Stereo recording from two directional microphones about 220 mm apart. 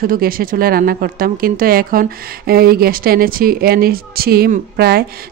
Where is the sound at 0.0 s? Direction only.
40° right (ahead or behind).